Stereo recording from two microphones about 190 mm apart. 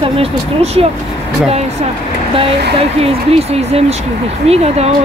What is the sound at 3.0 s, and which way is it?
A woman's voice, 30° right (ahead or behind).